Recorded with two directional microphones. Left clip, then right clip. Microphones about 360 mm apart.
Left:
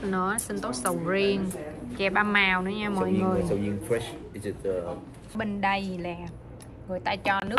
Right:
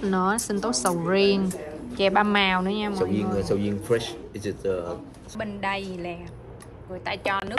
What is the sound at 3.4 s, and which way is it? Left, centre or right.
A man's voice, centre.